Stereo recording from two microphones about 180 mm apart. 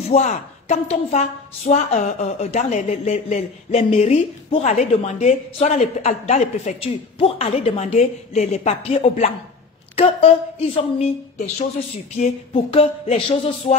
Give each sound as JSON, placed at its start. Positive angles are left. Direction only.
{"t": 0.1, "sound": "a woman's voice", "side_deg": 40}